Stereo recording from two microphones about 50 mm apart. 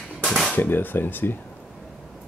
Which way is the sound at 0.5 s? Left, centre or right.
Left.